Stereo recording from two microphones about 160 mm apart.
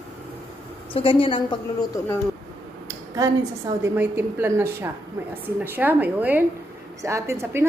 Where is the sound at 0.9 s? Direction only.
35° left (ahead or behind).